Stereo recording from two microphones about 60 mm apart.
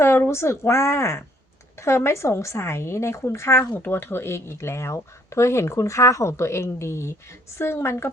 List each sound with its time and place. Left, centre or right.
0.3 s a woman's voice: left